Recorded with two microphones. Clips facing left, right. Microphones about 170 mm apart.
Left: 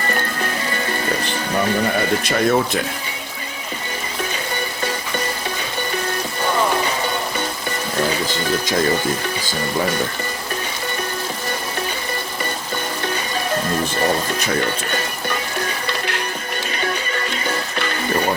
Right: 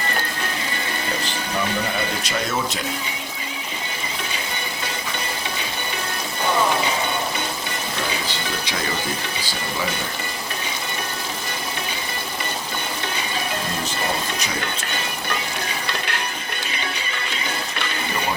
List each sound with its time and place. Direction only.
2.0 s speech: 55° left (ahead or behind)